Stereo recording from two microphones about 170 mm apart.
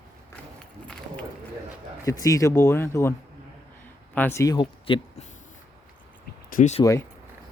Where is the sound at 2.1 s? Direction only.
20° left (ahead or behind).